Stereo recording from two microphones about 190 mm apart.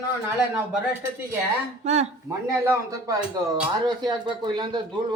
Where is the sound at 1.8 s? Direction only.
35° right (ahead or behind).